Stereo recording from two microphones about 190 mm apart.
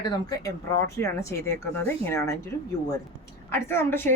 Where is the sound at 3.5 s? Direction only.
10° left (ahead or behind).